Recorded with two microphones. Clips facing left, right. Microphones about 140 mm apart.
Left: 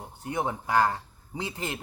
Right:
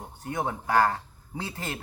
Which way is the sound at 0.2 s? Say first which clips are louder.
Left 1 dB; 15° left (ahead or behind).